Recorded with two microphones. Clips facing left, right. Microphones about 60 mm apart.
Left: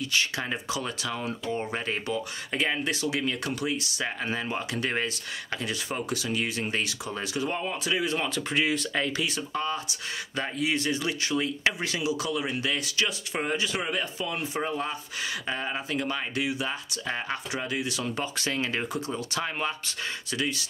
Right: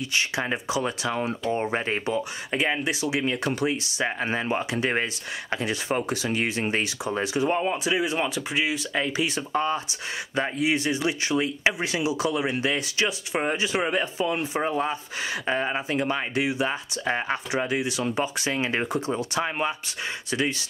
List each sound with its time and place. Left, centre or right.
0.1 s speech: right
8.5 s speech: centre
9.1 s speech: right